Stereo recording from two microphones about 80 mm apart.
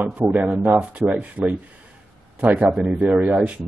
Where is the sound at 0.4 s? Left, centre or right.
Centre.